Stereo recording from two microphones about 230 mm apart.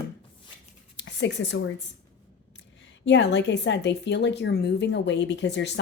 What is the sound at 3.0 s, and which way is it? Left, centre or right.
A woman's voice, left.